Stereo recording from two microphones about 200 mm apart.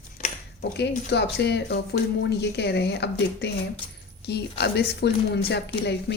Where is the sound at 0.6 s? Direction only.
55° left (ahead or behind).